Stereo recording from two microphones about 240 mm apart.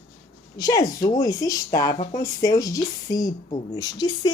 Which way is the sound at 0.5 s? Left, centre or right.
Centre.